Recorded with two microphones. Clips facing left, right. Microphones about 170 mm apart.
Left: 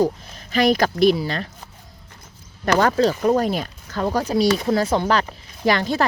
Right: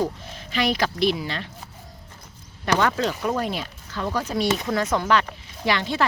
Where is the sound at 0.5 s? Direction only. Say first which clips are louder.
Left 6 dB; 45° left (ahead or behind).